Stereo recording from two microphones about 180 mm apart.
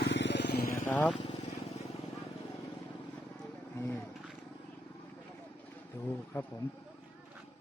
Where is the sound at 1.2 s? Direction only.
30° left (ahead or behind).